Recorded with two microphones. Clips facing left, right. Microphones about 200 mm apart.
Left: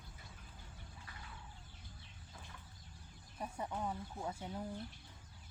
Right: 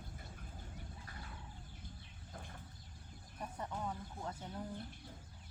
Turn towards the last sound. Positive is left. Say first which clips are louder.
# left 2 dB
turn(degrees=10)  # may be behind; listen again after turning